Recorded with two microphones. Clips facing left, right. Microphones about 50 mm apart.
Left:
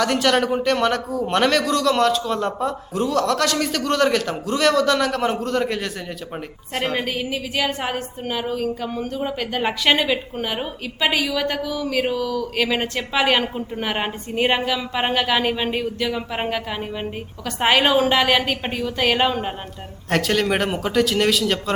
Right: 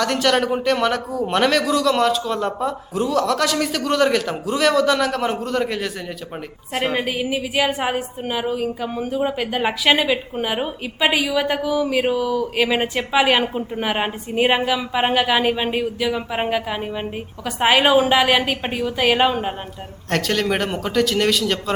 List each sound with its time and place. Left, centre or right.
0.0 s a man's voice: centre